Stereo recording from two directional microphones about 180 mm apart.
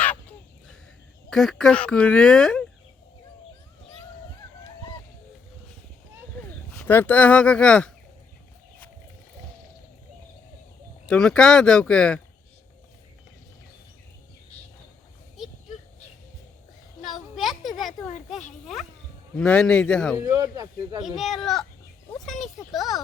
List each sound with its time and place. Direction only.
1.3 s speech: 5° left (ahead or behind)
6.7 s speech: 10° left (ahead or behind)
11.0 s speech: 5° left (ahead or behind)
15.4 s a sound: centre (ahead or behind)
17.2 s a sound: centre (ahead or behind)
18.6 s insect: centre (ahead or behind)
19.4 s speech: 5° left (ahead or behind)
20.1 s speech: 20° right (ahead or behind)
21.0 s speech: centre (ahead or behind)